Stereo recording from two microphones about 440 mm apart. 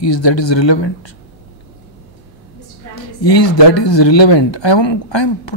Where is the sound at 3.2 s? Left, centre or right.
Left.